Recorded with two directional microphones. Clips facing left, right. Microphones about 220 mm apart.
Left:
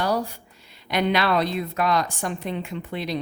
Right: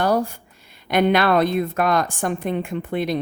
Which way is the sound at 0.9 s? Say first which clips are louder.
Right 5 dB; 50° right (ahead or behind).